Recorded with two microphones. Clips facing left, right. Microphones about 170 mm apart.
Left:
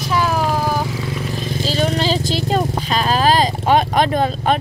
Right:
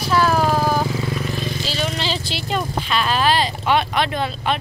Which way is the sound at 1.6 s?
45° left (ahead or behind).